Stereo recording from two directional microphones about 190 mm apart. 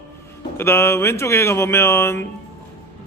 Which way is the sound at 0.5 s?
15° left (ahead or behind).